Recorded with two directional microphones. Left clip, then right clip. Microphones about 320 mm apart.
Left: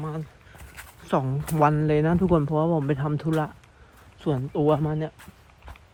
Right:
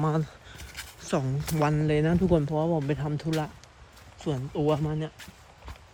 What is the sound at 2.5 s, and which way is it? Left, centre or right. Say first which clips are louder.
Speech: left 3 dB; left.